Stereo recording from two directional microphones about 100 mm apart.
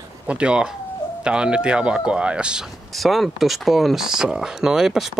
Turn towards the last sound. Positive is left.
turn(degrees=-5)  # may be behind; listen again after turning